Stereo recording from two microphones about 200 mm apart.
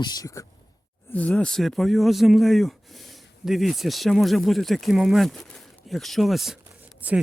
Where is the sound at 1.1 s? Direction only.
5° left (ahead or behind).